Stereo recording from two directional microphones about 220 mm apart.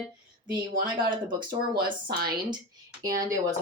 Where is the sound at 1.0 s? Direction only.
20° right (ahead or behind).